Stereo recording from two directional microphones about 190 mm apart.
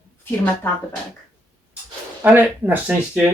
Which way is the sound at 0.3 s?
10° left (ahead or behind).